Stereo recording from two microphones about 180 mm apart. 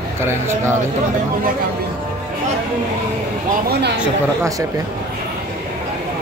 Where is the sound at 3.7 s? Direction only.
65° right (ahead or behind).